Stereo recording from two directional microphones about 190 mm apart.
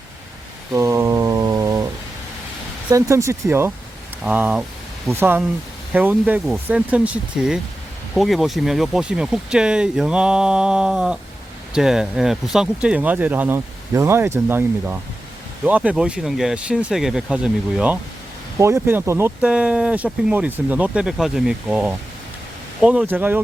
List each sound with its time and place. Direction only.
0.7 s mantra: 15° right (ahead or behind)
2.9 s speech: 15° right (ahead or behind)
18.5 s speech: 15° right (ahead or behind)